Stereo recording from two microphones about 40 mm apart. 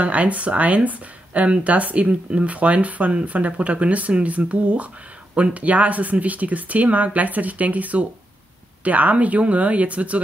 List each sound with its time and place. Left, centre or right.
0.0 s speech: right